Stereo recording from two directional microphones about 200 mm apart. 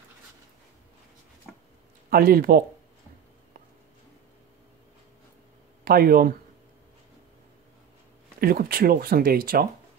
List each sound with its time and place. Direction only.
2.0 s speech: 50° right (ahead or behind)
5.9 s speech: 50° right (ahead or behind)
8.4 s speech: 45° right (ahead or behind)